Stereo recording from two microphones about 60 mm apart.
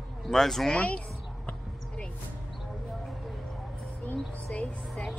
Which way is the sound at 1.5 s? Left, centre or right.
Centre.